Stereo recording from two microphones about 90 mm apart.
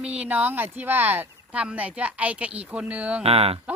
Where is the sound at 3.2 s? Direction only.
90° right.